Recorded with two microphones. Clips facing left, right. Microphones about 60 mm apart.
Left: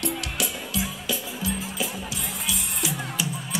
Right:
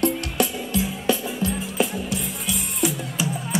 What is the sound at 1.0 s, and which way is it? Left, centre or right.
Music, right.